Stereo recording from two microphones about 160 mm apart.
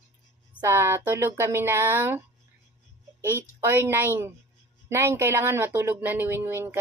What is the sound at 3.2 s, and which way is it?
Speech, 15° right (ahead or behind).